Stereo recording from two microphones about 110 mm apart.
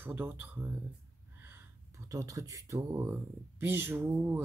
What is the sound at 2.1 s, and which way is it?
Speech, 30° right (ahead or behind).